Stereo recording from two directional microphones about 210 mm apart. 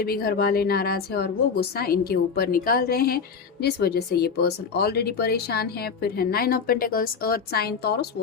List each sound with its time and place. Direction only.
0.0 s speech: 45° left (ahead or behind)